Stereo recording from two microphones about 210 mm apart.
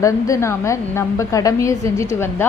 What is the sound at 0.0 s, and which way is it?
A woman's voice, 15° left (ahead or behind).